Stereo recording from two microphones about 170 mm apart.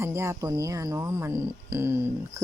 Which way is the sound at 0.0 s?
15° right (ahead or behind).